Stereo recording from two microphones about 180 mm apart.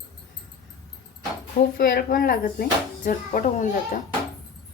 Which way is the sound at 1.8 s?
55° left (ahead or behind).